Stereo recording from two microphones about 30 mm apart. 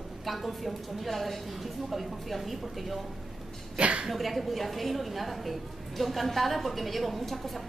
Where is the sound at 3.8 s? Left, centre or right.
Right.